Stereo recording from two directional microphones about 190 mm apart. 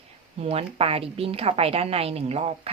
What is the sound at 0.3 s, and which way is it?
A woman's voice, 30° right (ahead or behind).